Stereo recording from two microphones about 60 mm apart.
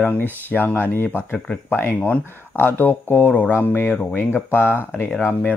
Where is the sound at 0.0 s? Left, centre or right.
Left.